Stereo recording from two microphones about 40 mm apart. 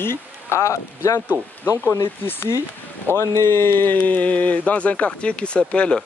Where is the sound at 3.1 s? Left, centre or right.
Left.